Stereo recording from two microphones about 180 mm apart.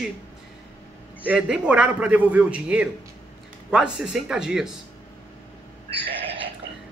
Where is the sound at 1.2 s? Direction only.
5° right (ahead or behind).